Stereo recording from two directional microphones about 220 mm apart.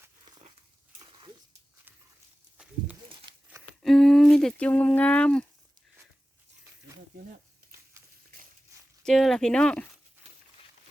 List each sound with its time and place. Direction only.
3.1 s crumpling: 20° right (ahead or behind)
3.8 s speech: centre (ahead or behind)
8.7 s a sound: 15° right (ahead or behind)
9.0 s speech: centre (ahead or behind)